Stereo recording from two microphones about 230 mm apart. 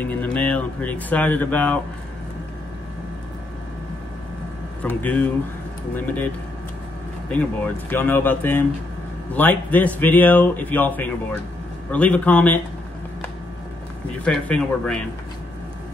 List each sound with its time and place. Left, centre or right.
0.0 s speech: centre
4.8 s speech: centre
7.2 s speech: centre
14.2 s speech: centre